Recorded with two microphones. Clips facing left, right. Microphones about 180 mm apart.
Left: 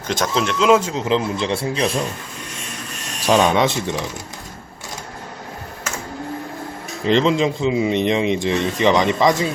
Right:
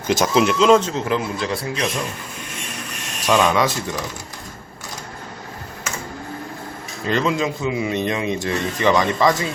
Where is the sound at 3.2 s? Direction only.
30° left (ahead or behind).